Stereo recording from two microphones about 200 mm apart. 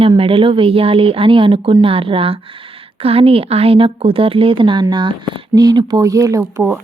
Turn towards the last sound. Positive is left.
turn(degrees=-15)  # may be behind; listen again after turning